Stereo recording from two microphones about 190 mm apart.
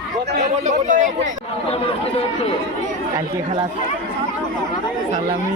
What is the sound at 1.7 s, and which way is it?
Speech, 30° left (ahead or behind).